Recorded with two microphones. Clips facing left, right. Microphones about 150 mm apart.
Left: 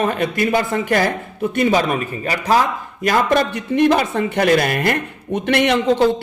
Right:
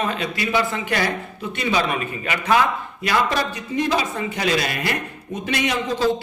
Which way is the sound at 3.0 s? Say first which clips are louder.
Left 5 dB; 50° left (ahead or behind).